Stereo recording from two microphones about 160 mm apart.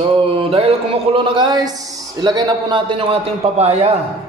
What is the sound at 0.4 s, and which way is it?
Mantra, 35° right (ahead or behind).